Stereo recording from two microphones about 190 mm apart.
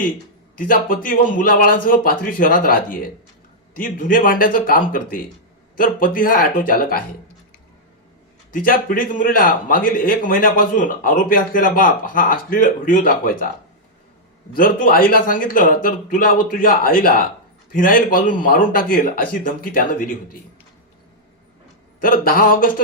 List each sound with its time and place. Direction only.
0.5 s a man's voice: 45° left (ahead or behind)
8.5 s a man's voice: 45° left (ahead or behind)
14.5 s a man's voice: 50° left (ahead or behind)
22.0 s a man's voice: 50° left (ahead or behind)